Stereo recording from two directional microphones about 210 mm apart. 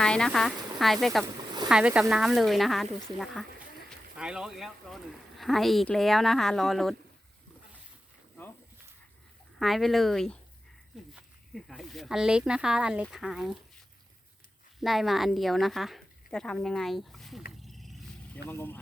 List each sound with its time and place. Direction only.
0.0 s speech: 5° left (ahead or behind)
1.2 s a sound: 20° right (ahead or behind)
1.7 s speech: 5° right (ahead or behind)
9.6 s speech: centre (ahead or behind)
14.8 s speech: centre (ahead or behind)
17.6 s a sound: centre (ahead or behind)
18.4 s speech: 10° left (ahead or behind)